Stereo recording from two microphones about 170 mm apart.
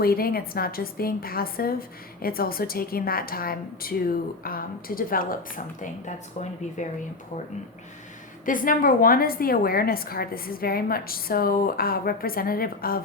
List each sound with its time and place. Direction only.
0.0 s a woman's voice: 60° left (ahead or behind)
8.4 s a woman's voice: 55° left (ahead or behind)